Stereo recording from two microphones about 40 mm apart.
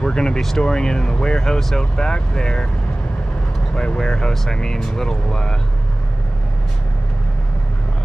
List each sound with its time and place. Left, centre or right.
0.0 s speech: centre
2.0 s speech: left
3.7 s speech: left